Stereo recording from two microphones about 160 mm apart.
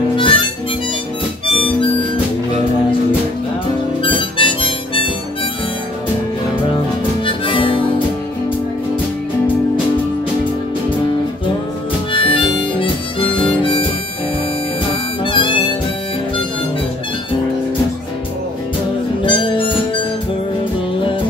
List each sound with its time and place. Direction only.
0.2 s harmonica: 30° left (ahead or behind)
1.5 s harmonica: 35° left (ahead or behind)
4.0 s harmonica: 30° left (ahead or behind)
7.2 s harmonica: 35° left (ahead or behind)
12.1 s harmonica: 30° left (ahead or behind)
15.2 s harmonica: 30° left (ahead or behind)
19.2 s music: 30° left (ahead or behind)